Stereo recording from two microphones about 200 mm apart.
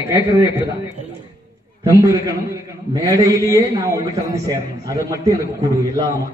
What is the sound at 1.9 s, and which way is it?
A man's voice, 15° right (ahead or behind).